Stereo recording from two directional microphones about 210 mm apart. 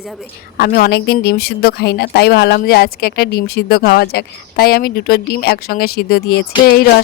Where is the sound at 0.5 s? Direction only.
45° left (ahead or behind).